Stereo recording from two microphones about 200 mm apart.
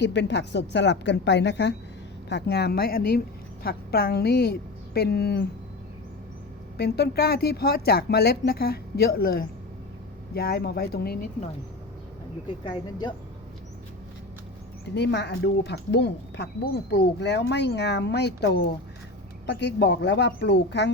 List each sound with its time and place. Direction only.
0.0 s a woman's voice: 60° left (ahead or behind)
6.7 s a woman's voice: 50° left (ahead or behind)
12.6 s speech: 25° left (ahead or behind)
14.9 s speech: 60° left (ahead or behind)